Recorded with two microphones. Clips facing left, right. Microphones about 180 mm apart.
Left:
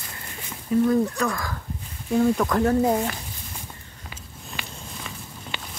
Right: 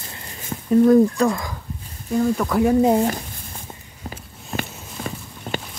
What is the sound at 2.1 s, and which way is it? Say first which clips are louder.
Speech: even; centre (ahead or behind).